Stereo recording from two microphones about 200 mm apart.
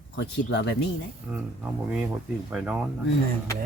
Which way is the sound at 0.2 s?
60° left (ahead or behind).